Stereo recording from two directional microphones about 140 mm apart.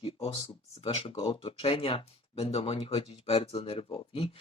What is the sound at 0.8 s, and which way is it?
Speech, 45° left (ahead or behind).